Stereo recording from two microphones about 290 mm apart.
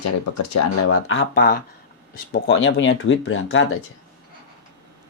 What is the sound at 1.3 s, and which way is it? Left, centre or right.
Speech, left.